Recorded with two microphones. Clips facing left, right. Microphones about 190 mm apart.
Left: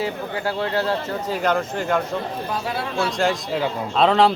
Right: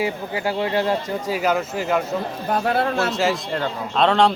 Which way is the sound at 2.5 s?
55° right (ahead or behind).